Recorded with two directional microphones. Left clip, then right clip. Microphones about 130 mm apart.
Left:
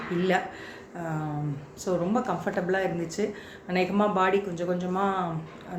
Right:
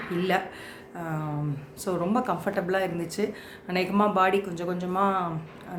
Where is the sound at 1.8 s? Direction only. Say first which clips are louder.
Even; 35° right (ahead or behind).